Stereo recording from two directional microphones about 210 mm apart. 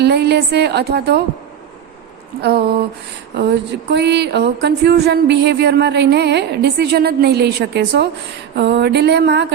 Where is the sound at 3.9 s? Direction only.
55° right (ahead or behind).